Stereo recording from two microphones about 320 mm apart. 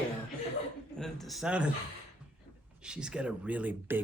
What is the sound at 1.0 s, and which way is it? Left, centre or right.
Speech, centre.